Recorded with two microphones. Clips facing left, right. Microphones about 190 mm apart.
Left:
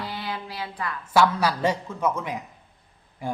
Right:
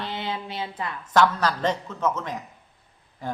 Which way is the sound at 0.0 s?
25° right (ahead or behind).